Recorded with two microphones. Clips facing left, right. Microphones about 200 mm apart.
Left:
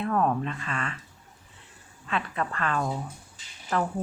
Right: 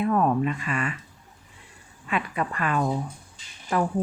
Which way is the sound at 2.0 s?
10° right (ahead or behind).